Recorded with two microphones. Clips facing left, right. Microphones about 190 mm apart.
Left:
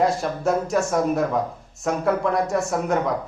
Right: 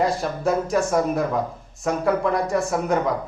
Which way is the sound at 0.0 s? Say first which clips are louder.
Left 1 dB; centre (ahead or behind).